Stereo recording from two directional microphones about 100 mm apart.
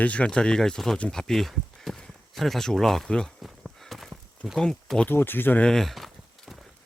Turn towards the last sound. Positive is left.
turn(degrees=0)  # may be behind; listen again after turning